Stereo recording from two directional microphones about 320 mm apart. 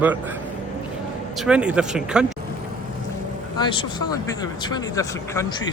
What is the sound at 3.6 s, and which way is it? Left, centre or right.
Speech, centre.